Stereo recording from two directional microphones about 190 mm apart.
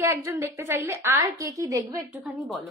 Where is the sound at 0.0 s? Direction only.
15° right (ahead or behind).